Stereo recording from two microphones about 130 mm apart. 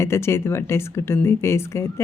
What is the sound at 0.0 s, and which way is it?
Speech, 20° left (ahead or behind).